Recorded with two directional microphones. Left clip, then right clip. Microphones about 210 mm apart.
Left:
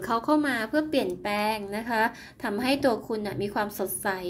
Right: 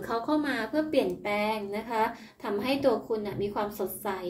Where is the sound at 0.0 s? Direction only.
35° left (ahead or behind).